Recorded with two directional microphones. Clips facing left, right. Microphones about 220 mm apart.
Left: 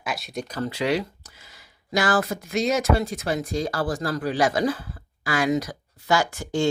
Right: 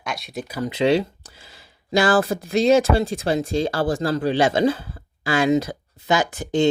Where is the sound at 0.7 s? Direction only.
25° right (ahead or behind).